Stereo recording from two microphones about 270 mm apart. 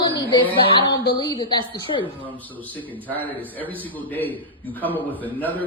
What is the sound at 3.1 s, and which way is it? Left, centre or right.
A man's voice, centre.